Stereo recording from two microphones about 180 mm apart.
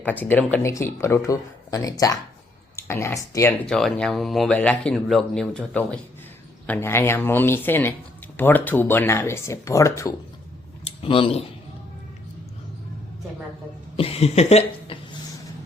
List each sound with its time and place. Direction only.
0.0 s speech: 10° left (ahead or behind)
3.7 s speech: 5° left (ahead or behind)
11.0 s speech: 30° left (ahead or behind)
13.9 s a sound: 30° left (ahead or behind)